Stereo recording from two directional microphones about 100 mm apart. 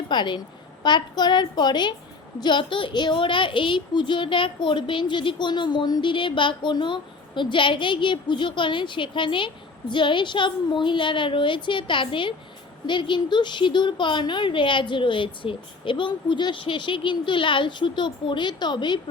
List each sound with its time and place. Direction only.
0.1 s a woman's voice: 50° left (ahead or behind)